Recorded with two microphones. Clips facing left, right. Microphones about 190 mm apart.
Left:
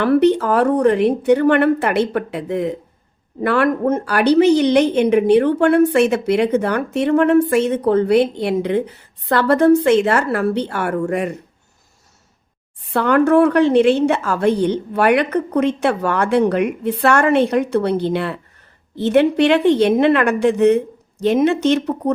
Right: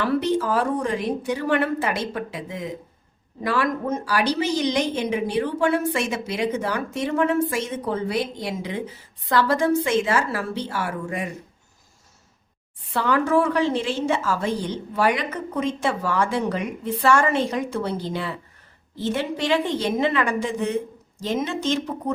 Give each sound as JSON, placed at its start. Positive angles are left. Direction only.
{"t": 0.0, "sound": "a woman's voice", "side_deg": 60}
{"t": 12.9, "sound": "a woman's voice", "side_deg": 60}